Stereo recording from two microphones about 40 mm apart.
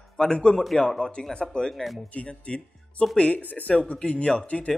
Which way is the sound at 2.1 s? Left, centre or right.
Left.